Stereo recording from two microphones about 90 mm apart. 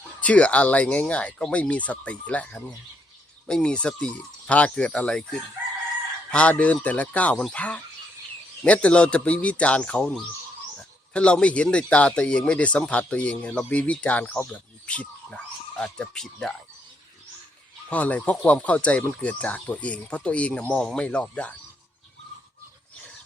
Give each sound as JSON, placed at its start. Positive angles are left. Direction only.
{"t": 0.2, "sound": "speech", "side_deg": 15}
{"t": 17.8, "sound": "speech", "side_deg": 15}